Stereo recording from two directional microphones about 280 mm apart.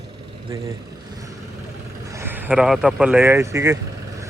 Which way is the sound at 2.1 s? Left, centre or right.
Centre.